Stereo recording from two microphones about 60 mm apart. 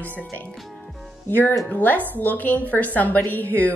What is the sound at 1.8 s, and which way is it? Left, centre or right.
Speech, left.